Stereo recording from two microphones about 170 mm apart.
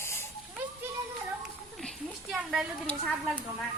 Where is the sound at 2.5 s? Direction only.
5° left (ahead or behind).